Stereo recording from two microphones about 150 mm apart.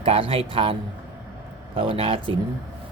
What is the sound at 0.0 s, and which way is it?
Speech, 40° right (ahead or behind).